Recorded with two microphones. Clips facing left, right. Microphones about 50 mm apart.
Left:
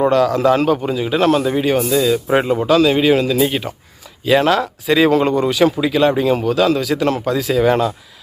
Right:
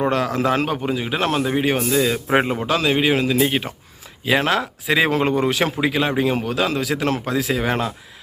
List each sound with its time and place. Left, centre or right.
0.1 s a man's voice: right
5.9 s speech: centre